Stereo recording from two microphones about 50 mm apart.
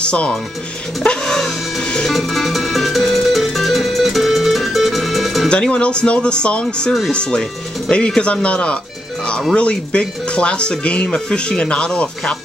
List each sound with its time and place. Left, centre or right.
0.0 s speech: left
1.0 s music: centre
2.0 s music: centre
5.5 s speech: left